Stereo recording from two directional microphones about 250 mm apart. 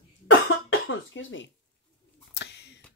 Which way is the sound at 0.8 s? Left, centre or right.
Left.